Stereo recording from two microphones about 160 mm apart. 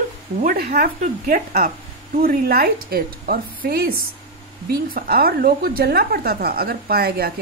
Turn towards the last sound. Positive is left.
turn(degrees=-75)  # may be behind; listen again after turning